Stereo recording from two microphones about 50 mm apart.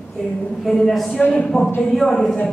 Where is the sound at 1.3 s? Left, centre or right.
Centre.